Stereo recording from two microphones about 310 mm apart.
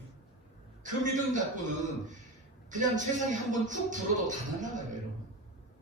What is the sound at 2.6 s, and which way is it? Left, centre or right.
Speech, right.